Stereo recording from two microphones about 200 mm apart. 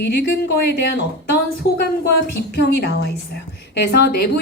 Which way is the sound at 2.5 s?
55° left (ahead or behind).